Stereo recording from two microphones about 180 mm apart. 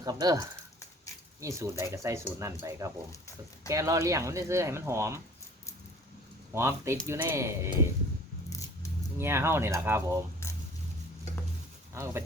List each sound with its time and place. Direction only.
0.0 s speech: 20° right (ahead or behind)
6.5 s speech: 15° right (ahead or behind)
8.4 s a sound: 15° left (ahead or behind)
9.1 s speech: 15° right (ahead or behind)
11.9 s speech: 15° right (ahead or behind)